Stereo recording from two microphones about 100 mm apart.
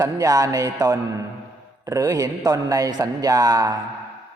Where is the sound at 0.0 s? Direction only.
35° right (ahead or behind).